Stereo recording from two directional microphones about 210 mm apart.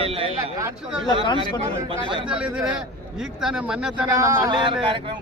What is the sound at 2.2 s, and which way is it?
Speech, 5° right (ahead or behind).